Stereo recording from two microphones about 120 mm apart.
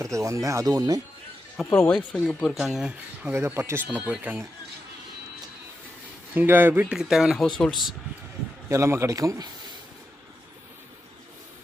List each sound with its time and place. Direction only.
0.0 s a man's voice: 25° right (ahead or behind)
1.9 s speech: 5° left (ahead or behind)
3.3 s a man's voice: 20° right (ahead or behind)
6.3 s speech: 15° right (ahead or behind)
6.9 s speech: 5° right (ahead or behind)
8.7 s a man's voice: 25° right (ahead or behind)